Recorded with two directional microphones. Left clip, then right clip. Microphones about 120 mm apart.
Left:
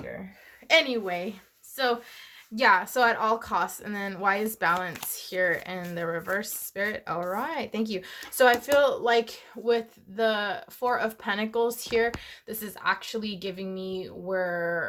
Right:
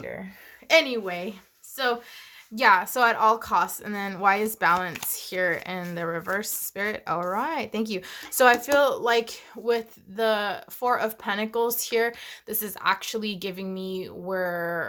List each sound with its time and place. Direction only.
0.7 s a woman's voice: 30° right (ahead or behind); by 14.8 s 55° right (ahead or behind)